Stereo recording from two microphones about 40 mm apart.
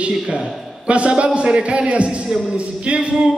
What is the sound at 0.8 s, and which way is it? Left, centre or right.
A man's voice, right.